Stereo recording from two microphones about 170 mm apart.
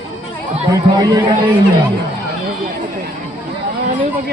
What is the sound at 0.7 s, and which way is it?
Speech, 20° right (ahead or behind).